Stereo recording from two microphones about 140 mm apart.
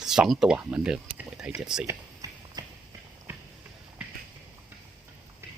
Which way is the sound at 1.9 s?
25° right (ahead or behind).